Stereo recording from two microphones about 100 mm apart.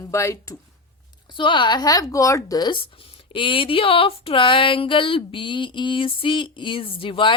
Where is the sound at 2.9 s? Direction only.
60° left (ahead or behind).